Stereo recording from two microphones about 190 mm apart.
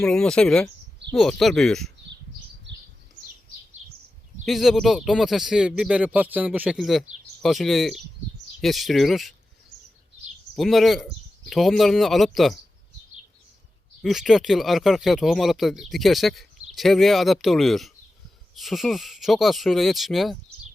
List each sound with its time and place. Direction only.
0.0 s speech: 5° left (ahead or behind)
2.7 s a sound: 75° right (ahead or behind)
4.4 s speech: centre (ahead or behind)
10.5 s speech: centre (ahead or behind)
14.0 s speech: centre (ahead or behind)